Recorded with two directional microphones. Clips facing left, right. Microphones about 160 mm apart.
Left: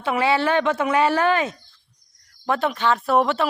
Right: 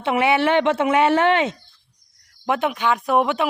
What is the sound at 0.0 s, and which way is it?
Speech, 25° right (ahead or behind).